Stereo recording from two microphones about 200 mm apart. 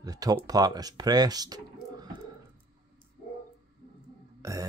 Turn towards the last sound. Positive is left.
turn(degrees=-15)  # may be behind; listen again after turning